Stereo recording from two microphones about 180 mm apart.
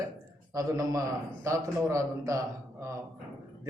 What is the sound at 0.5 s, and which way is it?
A man's voice, 20° right (ahead or behind).